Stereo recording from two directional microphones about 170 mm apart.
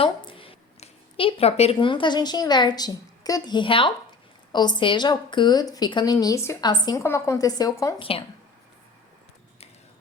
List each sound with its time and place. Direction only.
0.0 s a woman's voice: 30° left (ahead or behind)
7.9 s speech: 35° left (ahead or behind)